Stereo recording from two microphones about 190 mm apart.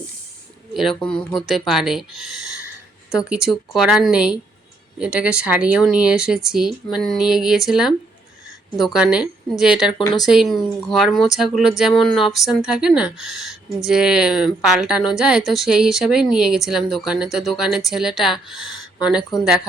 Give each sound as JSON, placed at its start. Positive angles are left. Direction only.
{"t": 0.7, "sound": "speech", "side_deg": 0}
{"t": 3.1, "sound": "speech", "side_deg": -5}
{"t": 18.7, "sound": "a sound", "side_deg": 20}
{"t": 19.3, "sound": "speech", "side_deg": 0}